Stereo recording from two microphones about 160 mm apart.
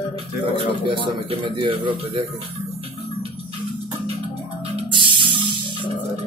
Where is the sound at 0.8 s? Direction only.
30° right (ahead or behind).